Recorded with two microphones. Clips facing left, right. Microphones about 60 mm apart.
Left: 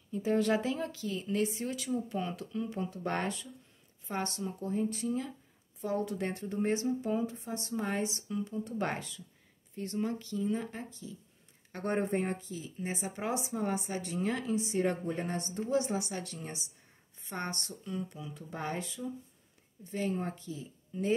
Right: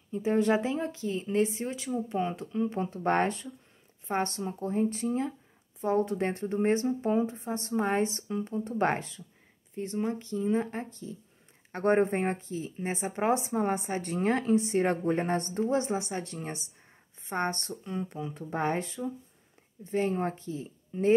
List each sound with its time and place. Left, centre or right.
0.1 s speech: right
9.8 s speech: right